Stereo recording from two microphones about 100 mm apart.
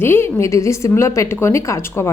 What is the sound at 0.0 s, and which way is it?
A woman's voice, 25° left (ahead or behind).